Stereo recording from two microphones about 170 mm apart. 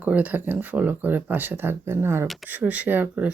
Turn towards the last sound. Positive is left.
turn(degrees=-10)  # may be behind; listen again after turning